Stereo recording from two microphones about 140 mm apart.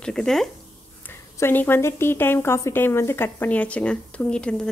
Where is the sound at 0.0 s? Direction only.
5° left (ahead or behind).